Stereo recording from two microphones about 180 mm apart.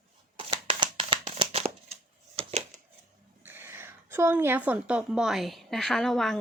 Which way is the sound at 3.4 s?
10° right (ahead or behind).